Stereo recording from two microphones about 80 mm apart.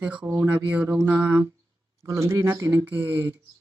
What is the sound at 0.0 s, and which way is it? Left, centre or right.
Speech, centre.